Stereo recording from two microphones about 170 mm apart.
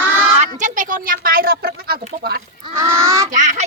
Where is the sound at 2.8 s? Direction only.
15° right (ahead or behind).